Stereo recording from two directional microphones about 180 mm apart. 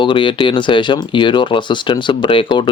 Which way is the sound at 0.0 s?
30° left (ahead or behind).